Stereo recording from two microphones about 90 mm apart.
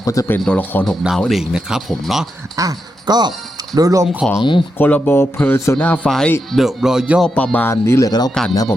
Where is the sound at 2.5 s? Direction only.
45° right (ahead or behind).